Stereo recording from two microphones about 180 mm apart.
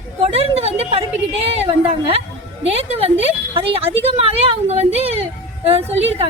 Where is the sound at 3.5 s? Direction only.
30° right (ahead or behind).